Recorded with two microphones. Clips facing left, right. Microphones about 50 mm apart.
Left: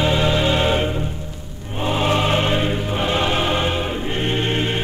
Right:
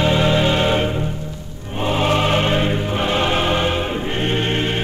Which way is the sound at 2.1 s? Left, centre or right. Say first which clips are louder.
Right 1 dB; right.